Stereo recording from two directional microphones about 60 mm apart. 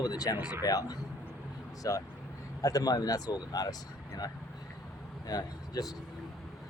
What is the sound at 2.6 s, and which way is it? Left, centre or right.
Speech, left.